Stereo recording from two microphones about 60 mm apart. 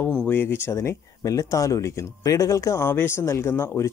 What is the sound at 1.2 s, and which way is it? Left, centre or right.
Speech, left.